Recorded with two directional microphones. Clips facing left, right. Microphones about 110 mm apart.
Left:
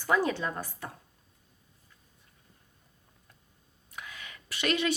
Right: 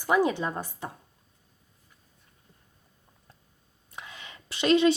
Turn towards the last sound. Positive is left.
turn(degrees=-25)  # may be behind; listen again after turning